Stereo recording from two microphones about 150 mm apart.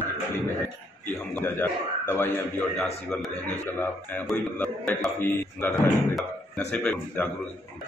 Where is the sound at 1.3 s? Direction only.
15° left (ahead or behind).